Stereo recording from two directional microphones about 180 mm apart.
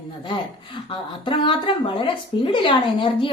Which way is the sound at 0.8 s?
20° left (ahead or behind).